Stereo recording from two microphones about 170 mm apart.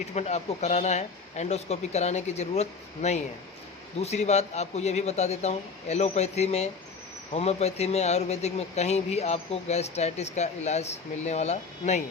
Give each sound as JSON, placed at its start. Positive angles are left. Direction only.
{"t": 0.1, "sound": "speech", "side_deg": 40}